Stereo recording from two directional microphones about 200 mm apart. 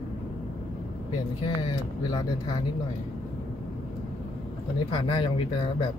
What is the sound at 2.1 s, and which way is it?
Speech, 20° left (ahead or behind).